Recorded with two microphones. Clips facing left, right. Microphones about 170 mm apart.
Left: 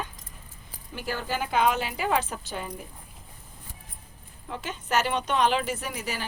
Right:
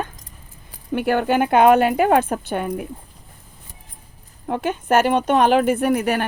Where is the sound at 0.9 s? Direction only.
60° right (ahead or behind).